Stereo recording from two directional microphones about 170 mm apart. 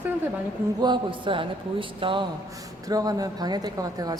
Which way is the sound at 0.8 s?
25° right (ahead or behind).